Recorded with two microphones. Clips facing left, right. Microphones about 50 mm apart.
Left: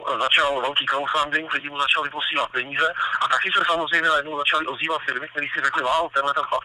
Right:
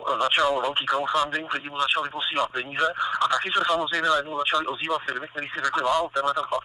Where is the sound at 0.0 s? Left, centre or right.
Left.